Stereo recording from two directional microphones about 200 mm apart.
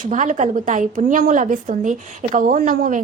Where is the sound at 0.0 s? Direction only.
40° right (ahead or behind).